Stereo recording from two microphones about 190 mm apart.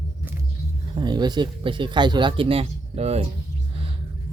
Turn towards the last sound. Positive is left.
turn(degrees=-35)  # may be behind; listen again after turning